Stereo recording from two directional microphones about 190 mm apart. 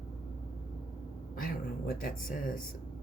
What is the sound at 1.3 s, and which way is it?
Speech, 50° left (ahead or behind).